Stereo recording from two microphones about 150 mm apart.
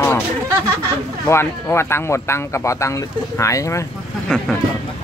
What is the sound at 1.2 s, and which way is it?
Speech, 15° left (ahead or behind).